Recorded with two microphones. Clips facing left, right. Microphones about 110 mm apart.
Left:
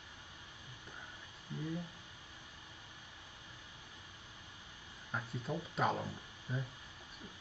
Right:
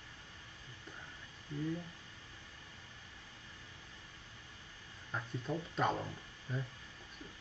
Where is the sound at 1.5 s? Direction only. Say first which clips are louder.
Right 3 dB; 15° left (ahead or behind).